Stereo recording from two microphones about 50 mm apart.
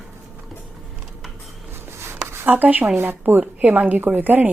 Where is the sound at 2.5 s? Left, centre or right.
Right.